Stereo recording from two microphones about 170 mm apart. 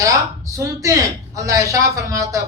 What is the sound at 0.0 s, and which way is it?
A woman's voice, 20° right (ahead or behind).